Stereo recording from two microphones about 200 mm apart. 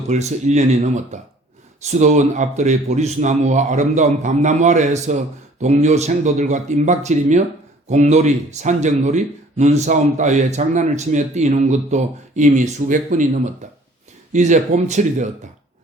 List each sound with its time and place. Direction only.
0.1 s speech: 35° right (ahead or behind)